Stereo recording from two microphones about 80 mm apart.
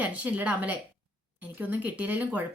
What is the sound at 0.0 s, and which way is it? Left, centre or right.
Speech, centre.